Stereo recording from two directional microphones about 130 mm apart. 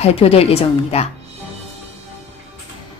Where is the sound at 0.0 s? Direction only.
50° left (ahead or behind).